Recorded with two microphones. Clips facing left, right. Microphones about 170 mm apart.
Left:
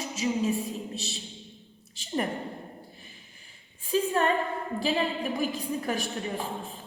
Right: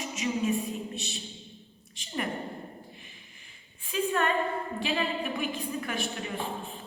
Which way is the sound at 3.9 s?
35° left (ahead or behind).